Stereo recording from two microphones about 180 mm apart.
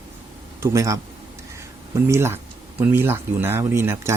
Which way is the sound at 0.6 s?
15° right (ahead or behind).